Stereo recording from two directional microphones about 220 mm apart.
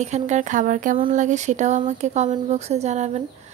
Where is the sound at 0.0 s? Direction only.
30° right (ahead or behind).